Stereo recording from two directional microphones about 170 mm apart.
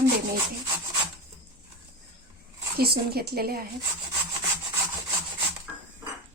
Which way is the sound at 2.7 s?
65° right (ahead or behind).